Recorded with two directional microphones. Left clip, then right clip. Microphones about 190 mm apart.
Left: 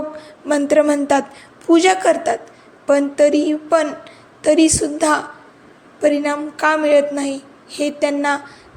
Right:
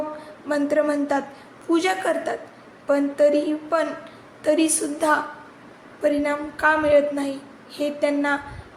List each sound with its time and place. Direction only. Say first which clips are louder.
0.4 s a woman's voice: left 7 dB; 40° left (ahead or behind)